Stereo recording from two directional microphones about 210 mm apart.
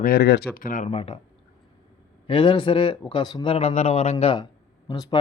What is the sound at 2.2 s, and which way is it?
Speech, 25° left (ahead or behind).